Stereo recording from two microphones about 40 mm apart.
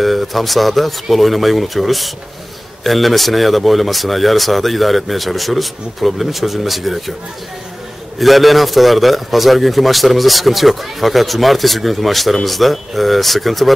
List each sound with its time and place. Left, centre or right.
0.0 s speech: centre
8.2 s speech: centre